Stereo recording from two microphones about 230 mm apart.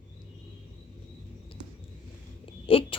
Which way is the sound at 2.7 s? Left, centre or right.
Left.